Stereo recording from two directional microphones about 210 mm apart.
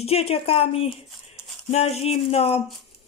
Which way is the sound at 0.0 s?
30° left (ahead or behind).